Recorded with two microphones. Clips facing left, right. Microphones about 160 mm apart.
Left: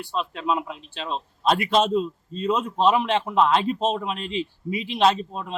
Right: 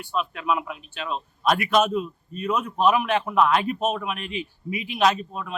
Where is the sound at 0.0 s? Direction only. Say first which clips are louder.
Even; 30° left (ahead or behind).